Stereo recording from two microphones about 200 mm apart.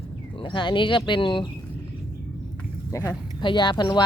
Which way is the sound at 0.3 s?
25° left (ahead or behind).